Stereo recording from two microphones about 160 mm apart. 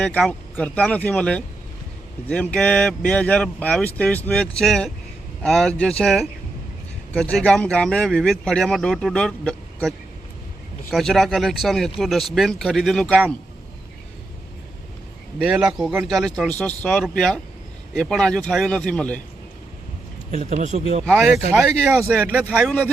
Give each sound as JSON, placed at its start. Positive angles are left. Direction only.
{"t": 0.0, "sound": "speech", "side_deg": 5}
{"t": 10.9, "sound": "speech", "side_deg": 0}
{"t": 15.4, "sound": "speech", "side_deg": -5}
{"t": 20.3, "sound": "speech", "side_deg": -50}
{"t": 22.1, "sound": "speech", "side_deg": -10}